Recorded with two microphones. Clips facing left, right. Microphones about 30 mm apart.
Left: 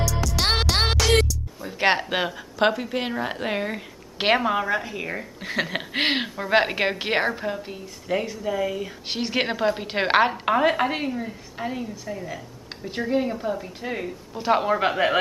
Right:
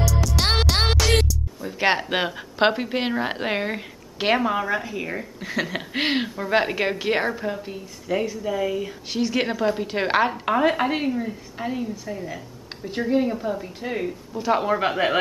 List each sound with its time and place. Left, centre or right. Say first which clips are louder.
0.0 s music: right 1 dB; centre
2.0 s a woman's voice: right 1 dB; centre
2.3 s a woman's voice: right 1 dB; centre
4.4 s a woman's voice: even; centre
7.5 s a woman's voice: right 1 dB; centre
9.1 s a woman's voice: right 2 dB; left; by 14.1 s centre
14.3 s a woman's voice: left 1 dB; centre